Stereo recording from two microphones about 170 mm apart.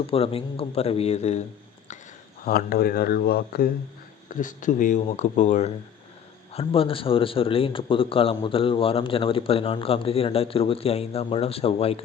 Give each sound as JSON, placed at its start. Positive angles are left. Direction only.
{"t": 0.1, "sound": "a man's voice", "side_deg": 35}
{"t": 2.4, "sound": "speech", "side_deg": 60}
{"t": 4.3, "sound": "a man's voice", "side_deg": 50}